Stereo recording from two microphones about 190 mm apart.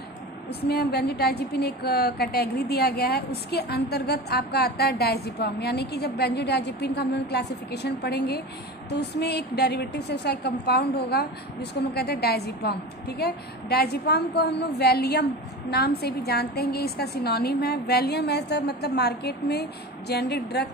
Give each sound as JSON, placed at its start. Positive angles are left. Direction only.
{"t": 0.6, "sound": "a woman's voice", "side_deg": 55}